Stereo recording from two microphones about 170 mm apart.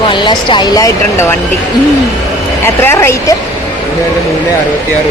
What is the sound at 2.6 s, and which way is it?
Speech, 15° left (ahead or behind).